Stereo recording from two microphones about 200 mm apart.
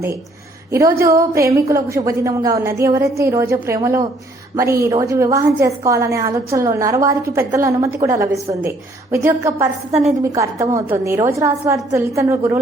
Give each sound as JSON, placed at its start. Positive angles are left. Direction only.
{"t": 0.7, "sound": "a woman's voice", "side_deg": -15}
{"t": 9.9, "sound": "a woman's voice", "side_deg": 0}
{"t": 10.3, "sound": "a woman's voice", "side_deg": -15}